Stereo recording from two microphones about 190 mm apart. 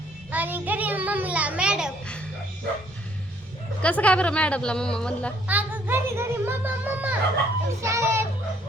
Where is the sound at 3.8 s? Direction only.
5° left (ahead or behind).